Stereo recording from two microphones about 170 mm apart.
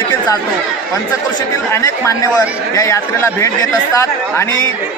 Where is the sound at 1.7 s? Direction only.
15° left (ahead or behind).